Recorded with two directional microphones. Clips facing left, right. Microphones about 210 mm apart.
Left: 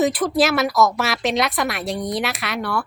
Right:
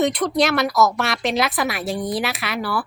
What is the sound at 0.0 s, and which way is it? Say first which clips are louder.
Speech: left 1 dB; centre (ahead or behind).